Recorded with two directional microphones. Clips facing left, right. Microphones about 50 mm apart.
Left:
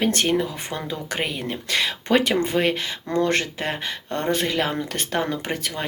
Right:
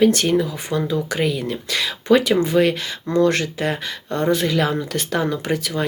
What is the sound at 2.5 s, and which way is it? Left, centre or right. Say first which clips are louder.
Speech: right 4 dB; left.